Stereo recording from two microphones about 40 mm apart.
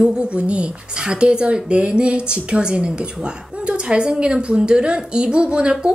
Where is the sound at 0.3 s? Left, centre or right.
Right.